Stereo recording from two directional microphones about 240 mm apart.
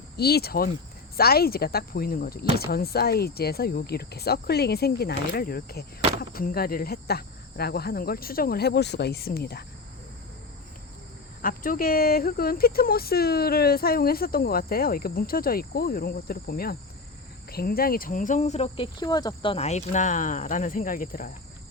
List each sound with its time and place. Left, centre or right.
0.2 s speech: left
11.4 s speech: left